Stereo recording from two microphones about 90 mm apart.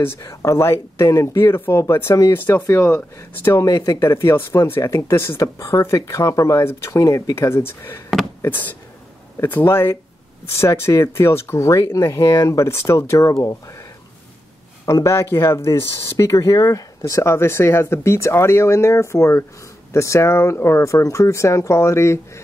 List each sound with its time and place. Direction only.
0.0 s speech: 25° left (ahead or behind)
0.3 s speech: 35° left (ahead or behind)
3.6 s speech: 40° left (ahead or behind)
4.0 s speech: 30° left (ahead or behind)
14.9 s speech: 30° left (ahead or behind)